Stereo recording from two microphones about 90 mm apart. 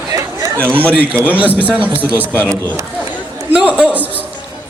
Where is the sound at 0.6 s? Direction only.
20° right (ahead or behind).